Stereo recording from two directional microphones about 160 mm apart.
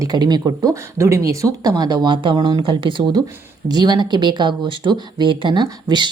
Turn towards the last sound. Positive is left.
turn(degrees=-30)  # may be behind; listen again after turning